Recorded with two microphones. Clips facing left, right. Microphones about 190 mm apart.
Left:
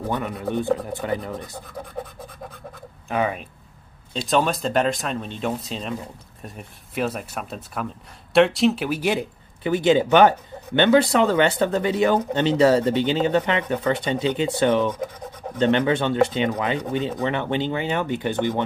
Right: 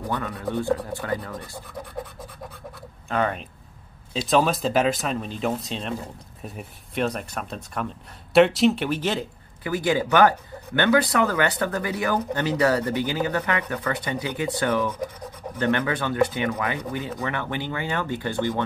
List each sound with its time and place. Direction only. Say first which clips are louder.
0.0 s speech: left 2 dB; 10° left (ahead or behind)
3.1 s speech: left 1 dB; 10° left (ahead or behind)
9.6 s speech: left 5 dB; 25° left (ahead or behind)